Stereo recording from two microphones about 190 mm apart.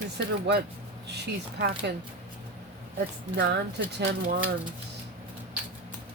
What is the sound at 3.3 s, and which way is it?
Speech, 65° right (ahead or behind).